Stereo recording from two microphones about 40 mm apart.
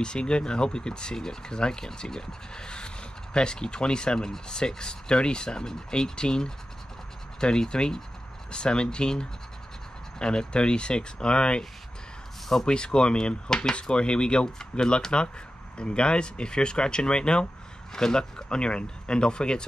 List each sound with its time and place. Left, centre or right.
0.0 s speech: left
12.6 s speech: left